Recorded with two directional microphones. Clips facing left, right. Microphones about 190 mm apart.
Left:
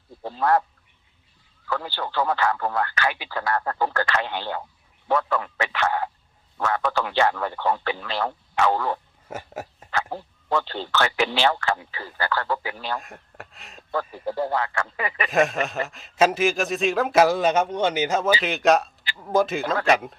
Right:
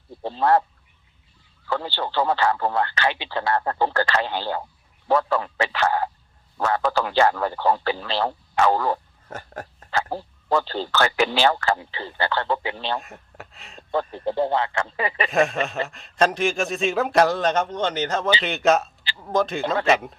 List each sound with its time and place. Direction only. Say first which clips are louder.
0.2 s speech: right 2 dB; 30° right (ahead or behind)
1.6 s a man's voice: right 2 dB; 30° right (ahead or behind)
9.3 s a sound: left 2 dB; 10° left (ahead or behind)
9.9 s a man's voice: right 2 dB; 30° right (ahead or behind)
13.0 s a man's voice: right 1 dB; centre (ahead or behind)
14.3 s speech: right 3 dB; 25° right (ahead or behind)
15.3 s a man's voice: left 1 dB; centre (ahead or behind)